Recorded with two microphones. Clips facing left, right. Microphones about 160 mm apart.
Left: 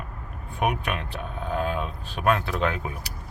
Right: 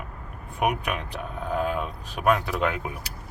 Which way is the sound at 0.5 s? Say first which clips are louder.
Even; 10° right (ahead or behind).